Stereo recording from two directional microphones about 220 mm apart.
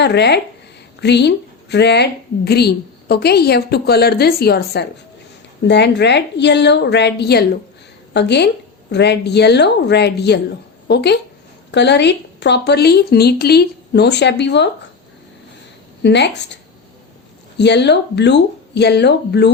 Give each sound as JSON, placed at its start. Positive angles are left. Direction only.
{"t": 0.0, "sound": "a woman's voice", "side_deg": 50}
{"t": 16.0, "sound": "a woman's voice", "side_deg": 50}
{"t": 17.6, "sound": "a woman's voice", "side_deg": 50}